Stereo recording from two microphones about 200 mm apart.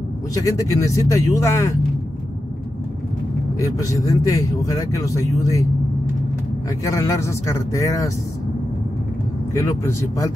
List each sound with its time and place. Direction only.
0.3 s a man's voice: 15° left (ahead or behind)
3.5 s a man's voice: 15° left (ahead or behind)
6.8 s a man's voice: 15° left (ahead or behind)
9.5 s a man's voice: 15° left (ahead or behind)